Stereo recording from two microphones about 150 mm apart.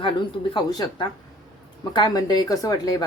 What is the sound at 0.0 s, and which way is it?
A woman's voice, 30° left (ahead or behind).